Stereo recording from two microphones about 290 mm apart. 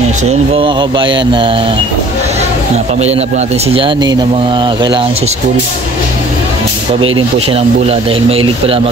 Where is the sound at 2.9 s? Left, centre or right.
Right.